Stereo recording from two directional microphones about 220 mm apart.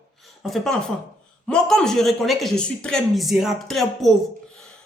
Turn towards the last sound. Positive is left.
turn(degrees=0)  # may be behind; listen again after turning